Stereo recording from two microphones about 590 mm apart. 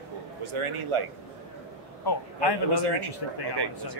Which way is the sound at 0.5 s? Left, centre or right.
Right.